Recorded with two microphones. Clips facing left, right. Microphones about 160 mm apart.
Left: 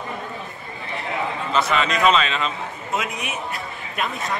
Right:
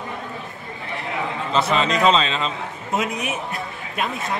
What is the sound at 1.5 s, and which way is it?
A man's voice, 30° right (ahead or behind).